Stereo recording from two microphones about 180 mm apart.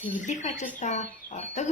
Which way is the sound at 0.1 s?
40° left (ahead or behind).